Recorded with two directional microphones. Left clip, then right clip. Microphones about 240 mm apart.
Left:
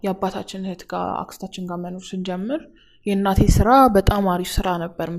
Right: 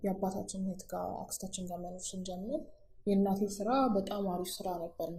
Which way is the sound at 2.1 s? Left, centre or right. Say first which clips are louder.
Left 13 dB; left.